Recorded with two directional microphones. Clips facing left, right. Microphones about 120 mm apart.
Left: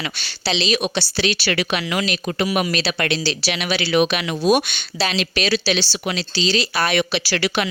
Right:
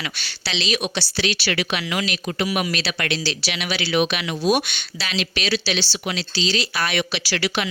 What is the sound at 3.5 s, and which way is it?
Speech, 45° left (ahead or behind).